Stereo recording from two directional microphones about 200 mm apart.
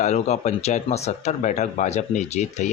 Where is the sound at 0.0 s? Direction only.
35° left (ahead or behind).